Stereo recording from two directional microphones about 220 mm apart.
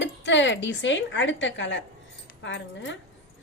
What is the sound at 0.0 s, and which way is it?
Speech, 55° left (ahead or behind).